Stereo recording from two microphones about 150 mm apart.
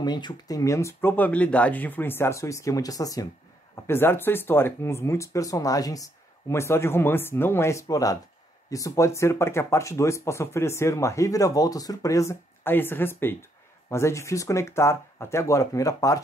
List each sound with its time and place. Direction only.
0.0 s speech: 30° left (ahead or behind)